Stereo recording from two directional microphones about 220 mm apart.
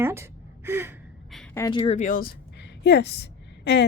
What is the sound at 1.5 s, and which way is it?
A woman's voice, 20° left (ahead or behind).